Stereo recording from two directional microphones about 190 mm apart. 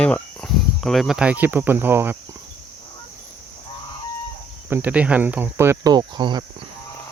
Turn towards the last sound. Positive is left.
turn(degrees=-20)  # may be behind; listen again after turning